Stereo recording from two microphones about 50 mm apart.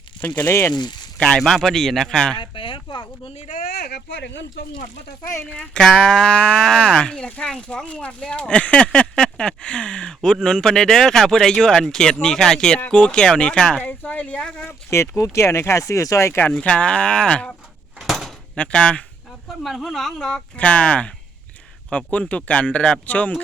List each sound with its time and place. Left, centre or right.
0.2 s speech: left
0.4 s speech: left
1.4 s speech: centre
5.5 s speech: centre
13.7 s speech: left
14.7 s speech: left
16.5 s speech: left
18.0 s door: centre
18.5 s speech: left
19.6 s speech: centre
20.6 s speech: left